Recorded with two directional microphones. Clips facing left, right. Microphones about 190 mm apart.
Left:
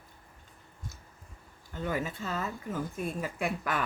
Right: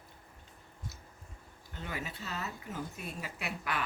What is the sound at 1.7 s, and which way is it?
Speech, 45° left (ahead or behind).